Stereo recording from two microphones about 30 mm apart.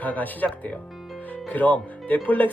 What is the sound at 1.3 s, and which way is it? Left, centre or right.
Music, left.